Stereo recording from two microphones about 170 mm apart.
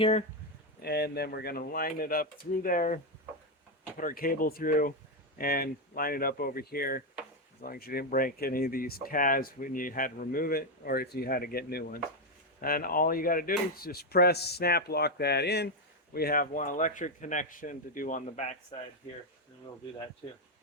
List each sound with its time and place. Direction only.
0.0 s speech: 40° left (ahead or behind)
0.8 s speech: 70° left (ahead or behind)
16.1 s speech: 60° left (ahead or behind); by 18.8 s 45° left (ahead or behind)